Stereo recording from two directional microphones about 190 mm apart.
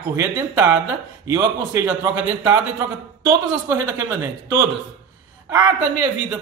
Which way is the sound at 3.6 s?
15° right (ahead or behind).